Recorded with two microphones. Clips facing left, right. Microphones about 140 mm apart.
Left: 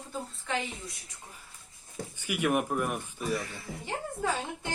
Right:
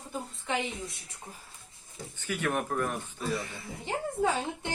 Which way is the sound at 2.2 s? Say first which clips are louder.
Left 3 dB; 10° left (ahead or behind).